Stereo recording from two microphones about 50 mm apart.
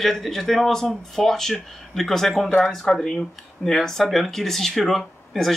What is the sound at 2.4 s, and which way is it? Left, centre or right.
Speech, left.